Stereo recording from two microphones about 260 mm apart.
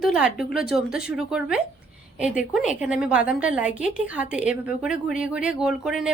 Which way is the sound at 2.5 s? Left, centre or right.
Centre.